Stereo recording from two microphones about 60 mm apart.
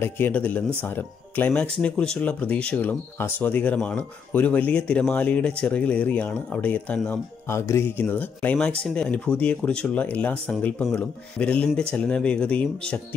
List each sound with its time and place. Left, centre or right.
0.0 s speech: left
1.5 s speech: centre
7.4 s speech: left
8.0 s speech: left
8.5 s speech: centre